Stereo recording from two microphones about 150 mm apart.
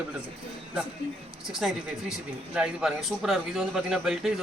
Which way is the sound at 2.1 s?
5° right (ahead or behind).